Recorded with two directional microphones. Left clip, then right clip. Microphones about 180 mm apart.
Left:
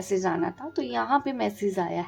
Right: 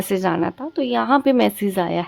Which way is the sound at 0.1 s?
45° right (ahead or behind).